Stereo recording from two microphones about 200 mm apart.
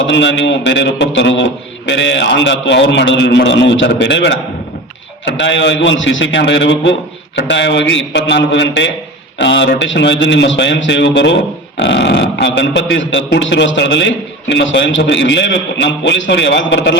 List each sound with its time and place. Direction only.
0.1 s a man's voice: 65° left (ahead or behind)